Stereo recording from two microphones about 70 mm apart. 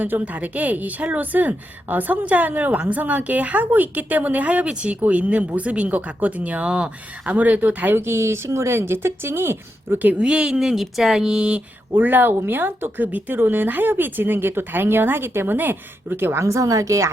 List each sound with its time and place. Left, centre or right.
0.0 s speech: right
7.9 s speech: right
10.2 s speech: centre
11.9 s speech: right